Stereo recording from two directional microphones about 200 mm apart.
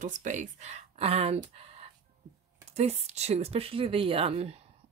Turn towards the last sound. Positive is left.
turn(degrees=-30)  # may be behind; listen again after turning